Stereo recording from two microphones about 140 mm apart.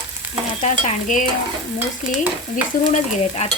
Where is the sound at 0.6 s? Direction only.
65° left (ahead or behind).